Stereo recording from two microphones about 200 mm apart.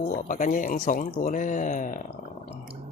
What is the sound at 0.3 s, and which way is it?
Speech, 40° left (ahead or behind).